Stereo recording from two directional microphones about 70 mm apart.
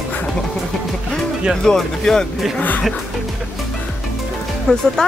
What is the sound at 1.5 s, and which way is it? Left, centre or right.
Speech, centre.